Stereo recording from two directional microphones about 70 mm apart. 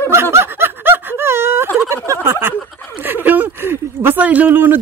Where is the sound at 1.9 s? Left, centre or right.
Right.